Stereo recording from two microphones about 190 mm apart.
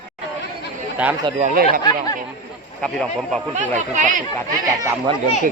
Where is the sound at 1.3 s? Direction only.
35° right (ahead or behind).